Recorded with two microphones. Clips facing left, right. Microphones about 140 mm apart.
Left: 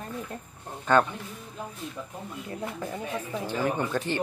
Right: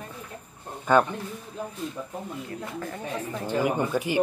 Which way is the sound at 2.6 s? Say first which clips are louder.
Left 4 dB; 15° left (ahead or behind).